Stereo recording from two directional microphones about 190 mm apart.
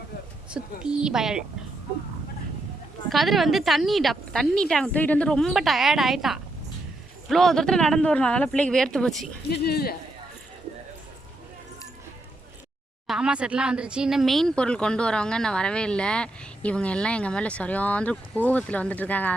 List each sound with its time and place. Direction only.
0.5 s speech: 5° right (ahead or behind)
3.1 s speech: centre (ahead or behind)
9.6 s speech: 55° left (ahead or behind)
13.1 s speech: 5° right (ahead or behind)